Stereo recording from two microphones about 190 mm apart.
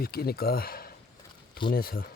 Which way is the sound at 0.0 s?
55° left (ahead or behind).